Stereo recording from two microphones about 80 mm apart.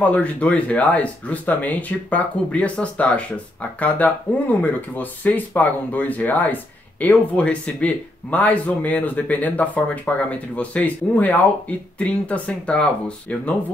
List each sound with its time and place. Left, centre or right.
0.0 s speech: centre